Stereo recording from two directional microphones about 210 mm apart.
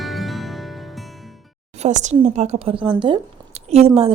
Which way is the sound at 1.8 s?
35° right (ahead or behind).